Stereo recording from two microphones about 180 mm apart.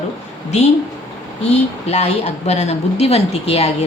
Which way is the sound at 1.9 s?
35° left (ahead or behind).